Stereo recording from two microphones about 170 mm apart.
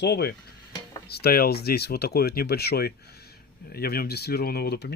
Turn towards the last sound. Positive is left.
turn(degrees=70)  # may be behind; listen again after turning